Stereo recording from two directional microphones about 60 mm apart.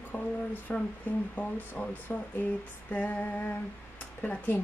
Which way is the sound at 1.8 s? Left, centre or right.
Left.